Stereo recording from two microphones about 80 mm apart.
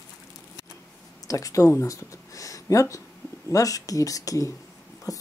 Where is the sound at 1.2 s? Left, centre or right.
Left.